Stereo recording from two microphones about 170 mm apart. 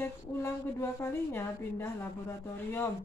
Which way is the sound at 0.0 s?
15° left (ahead or behind).